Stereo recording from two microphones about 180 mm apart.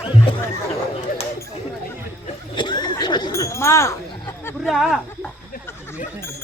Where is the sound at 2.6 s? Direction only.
25° left (ahead or behind).